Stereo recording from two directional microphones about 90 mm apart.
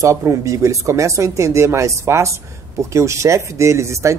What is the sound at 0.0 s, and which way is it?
Speech, 35° right (ahead or behind).